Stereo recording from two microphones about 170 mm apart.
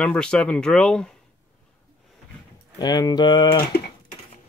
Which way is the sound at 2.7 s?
25° left (ahead or behind).